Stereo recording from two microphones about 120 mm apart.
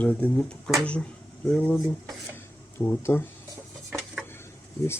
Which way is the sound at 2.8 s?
20° left (ahead or behind).